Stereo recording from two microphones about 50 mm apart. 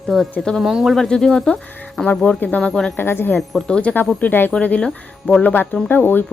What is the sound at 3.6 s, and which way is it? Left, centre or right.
Speech, centre.